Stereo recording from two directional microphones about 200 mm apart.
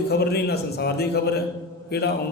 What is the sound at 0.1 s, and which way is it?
A man's voice, 55° left (ahead or behind).